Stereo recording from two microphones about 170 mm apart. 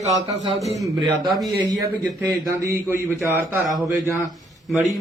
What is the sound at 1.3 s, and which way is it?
Speech, centre (ahead or behind).